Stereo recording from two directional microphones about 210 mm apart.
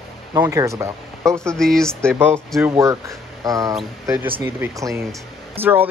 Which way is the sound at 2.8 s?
15° right (ahead or behind).